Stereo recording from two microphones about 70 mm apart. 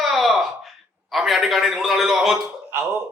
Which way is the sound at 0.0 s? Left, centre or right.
Centre.